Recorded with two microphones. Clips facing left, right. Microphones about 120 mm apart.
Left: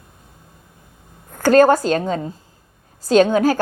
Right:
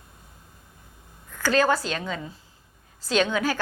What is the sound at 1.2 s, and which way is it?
A woman's voice, 45° left (ahead or behind).